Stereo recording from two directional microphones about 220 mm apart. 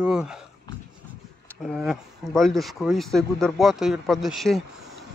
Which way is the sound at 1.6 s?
Centre (ahead or behind).